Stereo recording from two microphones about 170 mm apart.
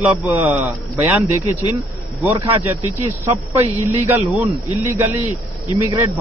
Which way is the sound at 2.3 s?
30° right (ahead or behind).